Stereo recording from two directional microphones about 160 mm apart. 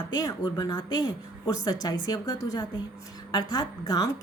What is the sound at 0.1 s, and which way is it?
A woman's voice, 25° left (ahead or behind).